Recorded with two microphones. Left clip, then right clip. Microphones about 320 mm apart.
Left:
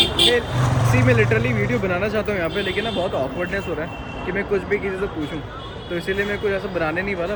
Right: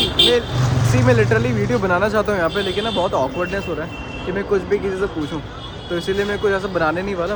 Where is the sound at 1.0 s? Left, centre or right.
Centre.